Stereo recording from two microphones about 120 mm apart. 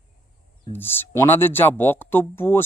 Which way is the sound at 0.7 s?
15° left (ahead or behind).